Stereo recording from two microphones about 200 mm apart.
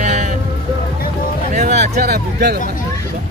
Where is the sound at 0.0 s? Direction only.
35° right (ahead or behind).